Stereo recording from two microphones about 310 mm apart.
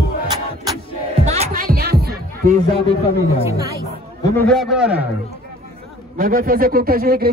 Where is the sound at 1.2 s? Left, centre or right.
Right.